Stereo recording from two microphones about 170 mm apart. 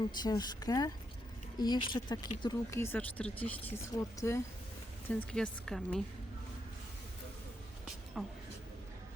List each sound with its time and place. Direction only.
0.0 s speech: 25° left (ahead or behind)
5.0 s speech: 5° left (ahead or behind)
8.1 s speech: centre (ahead or behind)